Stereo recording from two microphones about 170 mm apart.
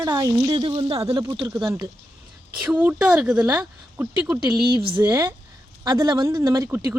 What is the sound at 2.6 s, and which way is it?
Speech, 10° right (ahead or behind).